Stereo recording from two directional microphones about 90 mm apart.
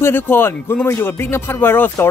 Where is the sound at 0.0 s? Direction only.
25° left (ahead or behind).